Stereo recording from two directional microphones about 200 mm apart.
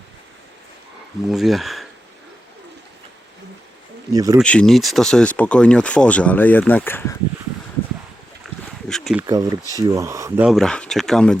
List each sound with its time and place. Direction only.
1.3 s speech: centre (ahead or behind)
4.1 s speech: 20° right (ahead or behind)
4.4 s speech: 5° left (ahead or behind)
8.4 s a sound: centre (ahead or behind)
9.2 s speech: 15° right (ahead or behind); by 11.3 s 5° left (ahead or behind)